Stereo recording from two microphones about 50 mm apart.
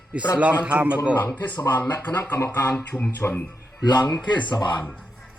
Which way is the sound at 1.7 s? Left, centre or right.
Left.